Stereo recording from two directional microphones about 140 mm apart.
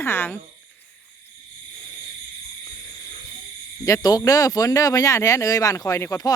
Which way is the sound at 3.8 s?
25° left (ahead or behind).